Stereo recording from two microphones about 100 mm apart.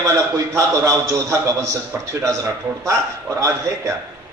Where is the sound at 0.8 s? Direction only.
30° right (ahead or behind).